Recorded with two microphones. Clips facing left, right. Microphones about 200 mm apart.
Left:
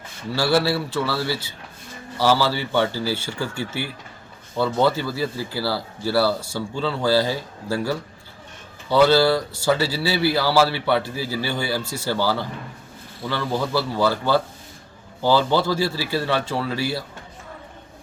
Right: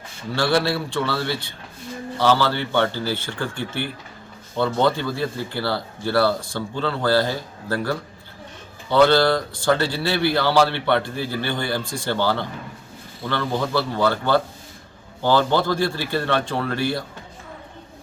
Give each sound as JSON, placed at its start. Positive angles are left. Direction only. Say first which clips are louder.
{"t": 0.3, "sound": "a man's voice", "louder": "left 1 dB", "side_deg": 5}